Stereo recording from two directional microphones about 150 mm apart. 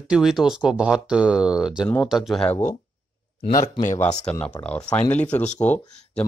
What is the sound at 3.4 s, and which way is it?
Speech, 75° left (ahead or behind).